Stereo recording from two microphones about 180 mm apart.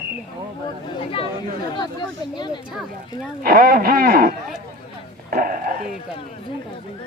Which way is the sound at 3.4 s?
55° right (ahead or behind).